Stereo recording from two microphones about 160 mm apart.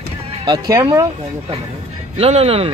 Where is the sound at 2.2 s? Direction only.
40° right (ahead or behind).